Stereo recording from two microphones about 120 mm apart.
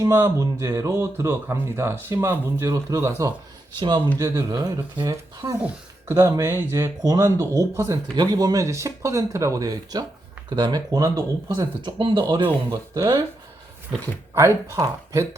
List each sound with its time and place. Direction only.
0.0 s speech: 25° right (ahead or behind)
3.8 s speech: 40° right (ahead or behind)
4.2 s speech: 25° right (ahead or behind)
6.1 s speech: 20° right (ahead or behind)
11.8 s speech: 45° right (ahead or behind); by 13.2 s 25° right (ahead or behind)
14.3 s speech: 25° right (ahead or behind)